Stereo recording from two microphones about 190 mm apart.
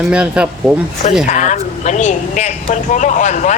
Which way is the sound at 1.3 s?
40° left (ahead or behind).